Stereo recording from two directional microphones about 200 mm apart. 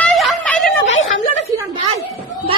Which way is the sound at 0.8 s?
70° left (ahead or behind).